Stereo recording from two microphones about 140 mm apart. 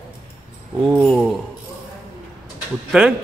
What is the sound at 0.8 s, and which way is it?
Speech, centre (ahead or behind).